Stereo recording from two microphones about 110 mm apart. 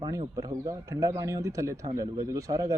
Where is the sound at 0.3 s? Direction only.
30° right (ahead or behind).